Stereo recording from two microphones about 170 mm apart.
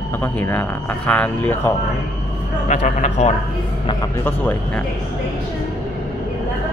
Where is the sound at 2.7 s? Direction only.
45° left (ahead or behind).